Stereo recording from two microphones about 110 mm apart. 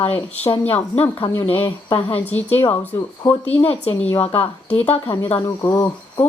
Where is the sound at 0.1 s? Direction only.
15° left (ahead or behind).